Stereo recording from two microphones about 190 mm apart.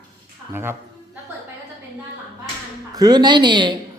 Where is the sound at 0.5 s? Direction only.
10° right (ahead or behind).